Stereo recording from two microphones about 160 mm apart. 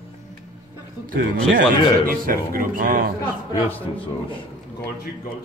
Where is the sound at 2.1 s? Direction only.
60° right (ahead or behind).